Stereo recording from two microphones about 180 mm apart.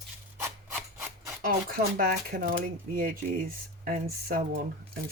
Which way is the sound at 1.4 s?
50° right (ahead or behind).